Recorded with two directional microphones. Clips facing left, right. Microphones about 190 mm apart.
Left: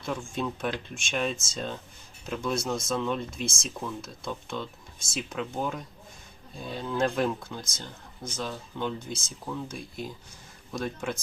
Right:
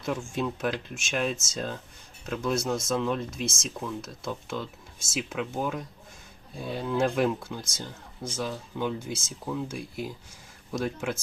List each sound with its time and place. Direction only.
0.0 s speech: 5° right (ahead or behind)